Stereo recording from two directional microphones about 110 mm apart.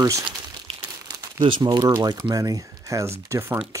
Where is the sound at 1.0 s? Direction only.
45° right (ahead or behind).